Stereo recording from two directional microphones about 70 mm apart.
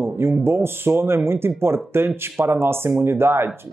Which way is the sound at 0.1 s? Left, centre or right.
Right.